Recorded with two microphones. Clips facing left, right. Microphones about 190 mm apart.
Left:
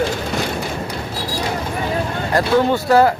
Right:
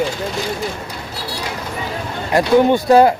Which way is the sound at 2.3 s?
15° right (ahead or behind).